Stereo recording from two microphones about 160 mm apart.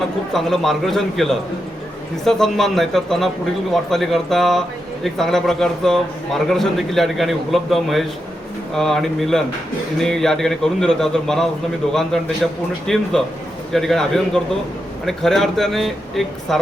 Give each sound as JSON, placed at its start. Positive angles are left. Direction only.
{"t": 0.3, "sound": "a man's voice", "side_deg": 0}